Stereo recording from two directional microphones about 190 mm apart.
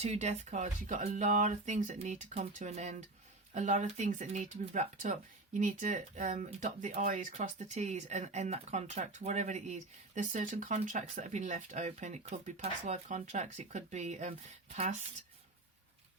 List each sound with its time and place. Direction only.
0.0 s speech: 35° right (ahead or behind)